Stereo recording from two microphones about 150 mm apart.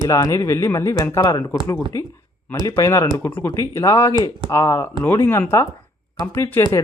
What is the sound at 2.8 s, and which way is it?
Speech, 20° left (ahead or behind).